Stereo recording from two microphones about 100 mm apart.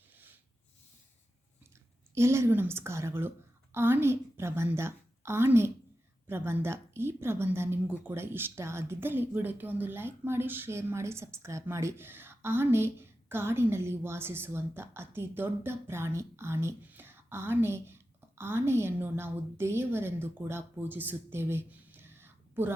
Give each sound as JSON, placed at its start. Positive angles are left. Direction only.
{"t": 2.1, "sound": "a woman's voice", "side_deg": -30}